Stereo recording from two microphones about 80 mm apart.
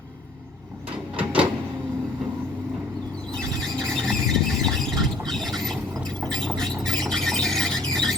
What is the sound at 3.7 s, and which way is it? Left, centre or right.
Squeal, centre.